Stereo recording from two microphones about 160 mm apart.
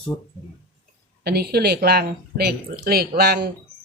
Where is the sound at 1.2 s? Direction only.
80° right.